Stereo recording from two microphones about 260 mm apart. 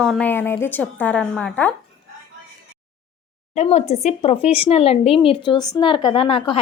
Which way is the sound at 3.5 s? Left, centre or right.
Left.